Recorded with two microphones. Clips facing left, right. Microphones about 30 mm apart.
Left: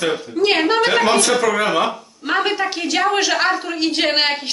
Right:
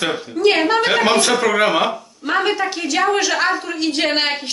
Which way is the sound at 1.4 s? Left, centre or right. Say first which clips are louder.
Right 1 dB; centre.